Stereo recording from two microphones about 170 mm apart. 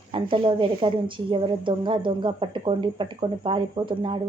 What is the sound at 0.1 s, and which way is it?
A woman's voice, 30° right (ahead or behind).